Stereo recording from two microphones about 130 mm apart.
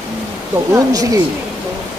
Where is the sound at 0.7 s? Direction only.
25° right (ahead or behind).